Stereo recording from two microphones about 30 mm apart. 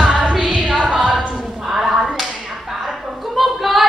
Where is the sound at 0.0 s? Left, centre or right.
Right.